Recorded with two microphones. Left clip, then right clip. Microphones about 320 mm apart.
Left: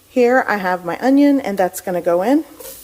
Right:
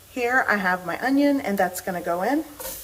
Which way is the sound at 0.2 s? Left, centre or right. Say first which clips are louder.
Left 7 dB; left.